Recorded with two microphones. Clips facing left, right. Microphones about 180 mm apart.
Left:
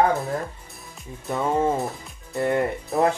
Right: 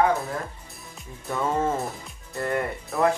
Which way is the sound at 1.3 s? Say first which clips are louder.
Left 3 dB; 15° left (ahead or behind).